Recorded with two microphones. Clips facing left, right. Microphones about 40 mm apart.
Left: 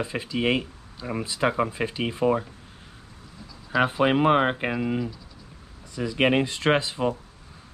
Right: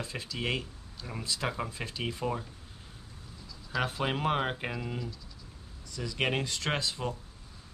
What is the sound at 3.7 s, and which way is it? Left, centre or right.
Speech, left.